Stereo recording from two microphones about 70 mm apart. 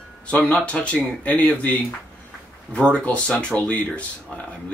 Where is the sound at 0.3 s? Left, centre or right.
Centre.